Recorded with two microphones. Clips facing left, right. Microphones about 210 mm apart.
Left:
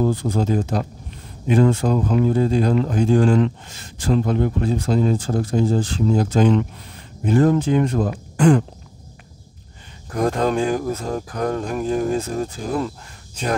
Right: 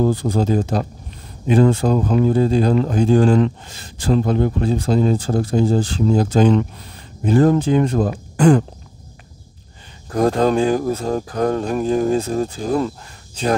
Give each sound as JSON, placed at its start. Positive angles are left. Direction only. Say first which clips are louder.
{"t": 0.0, "sound": "speech", "louder": "right 2 dB", "side_deg": -35}
{"t": 10.1, "sound": "speech", "louder": "right 4 dB", "side_deg": -35}